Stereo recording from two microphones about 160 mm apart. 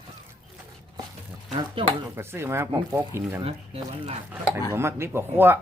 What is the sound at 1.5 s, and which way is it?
Speech, 35° right (ahead or behind).